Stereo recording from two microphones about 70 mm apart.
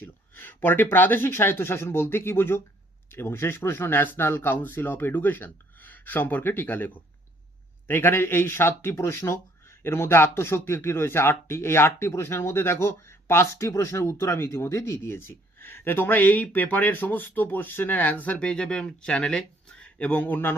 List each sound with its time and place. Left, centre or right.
0.0 s speech: left